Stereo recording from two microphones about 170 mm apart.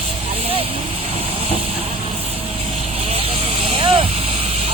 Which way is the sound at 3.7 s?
30° right (ahead or behind).